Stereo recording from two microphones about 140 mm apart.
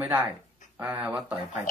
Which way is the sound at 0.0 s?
15° right (ahead or behind).